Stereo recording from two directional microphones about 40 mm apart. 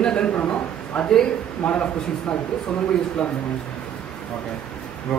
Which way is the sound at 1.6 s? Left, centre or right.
Centre.